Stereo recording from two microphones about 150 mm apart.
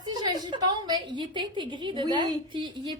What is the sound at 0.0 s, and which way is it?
A woman's voice, 30° right (ahead or behind).